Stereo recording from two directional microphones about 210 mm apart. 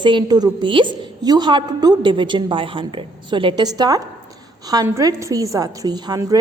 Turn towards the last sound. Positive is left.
turn(degrees=-20)  # may be behind; listen again after turning